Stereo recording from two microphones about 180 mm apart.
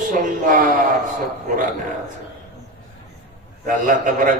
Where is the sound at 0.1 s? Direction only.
50° right (ahead or behind).